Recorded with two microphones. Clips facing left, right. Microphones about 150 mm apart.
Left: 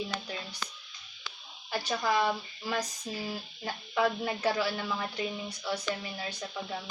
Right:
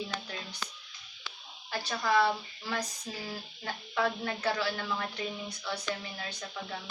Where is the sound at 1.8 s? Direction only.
15° left (ahead or behind).